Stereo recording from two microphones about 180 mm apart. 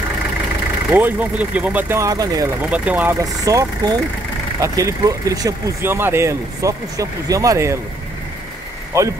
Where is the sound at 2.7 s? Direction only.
10° right (ahead or behind).